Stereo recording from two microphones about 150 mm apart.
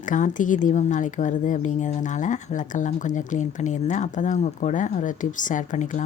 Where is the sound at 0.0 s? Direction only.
60° left (ahead or behind).